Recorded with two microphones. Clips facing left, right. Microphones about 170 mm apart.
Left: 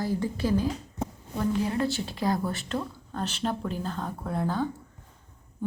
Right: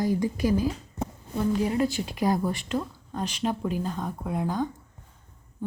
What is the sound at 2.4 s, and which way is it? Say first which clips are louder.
Speech: right 2 dB; 5° right (ahead or behind).